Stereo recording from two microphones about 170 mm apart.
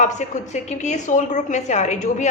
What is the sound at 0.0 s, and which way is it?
A woman's voice, 45° left (ahead or behind).